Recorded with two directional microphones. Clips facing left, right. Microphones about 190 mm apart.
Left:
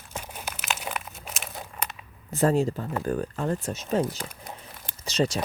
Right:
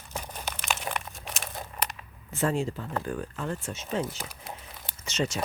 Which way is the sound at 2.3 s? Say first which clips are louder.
Left 5 dB; 40° left (ahead or behind).